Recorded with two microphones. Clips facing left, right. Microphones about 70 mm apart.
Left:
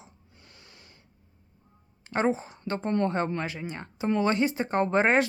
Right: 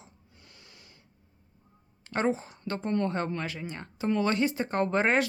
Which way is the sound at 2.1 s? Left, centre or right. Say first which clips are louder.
Left 2 dB; left.